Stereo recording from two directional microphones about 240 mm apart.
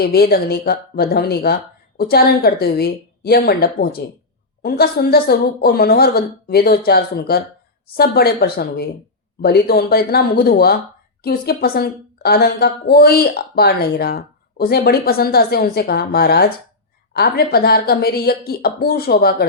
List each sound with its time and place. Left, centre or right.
0.0 s a woman's voice: left